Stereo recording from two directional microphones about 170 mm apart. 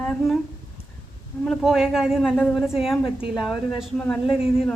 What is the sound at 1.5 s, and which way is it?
A man's voice, 5° right (ahead or behind).